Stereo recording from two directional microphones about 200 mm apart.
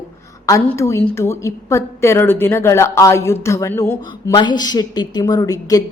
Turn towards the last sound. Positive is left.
turn(degrees=20)  # may be behind; listen again after turning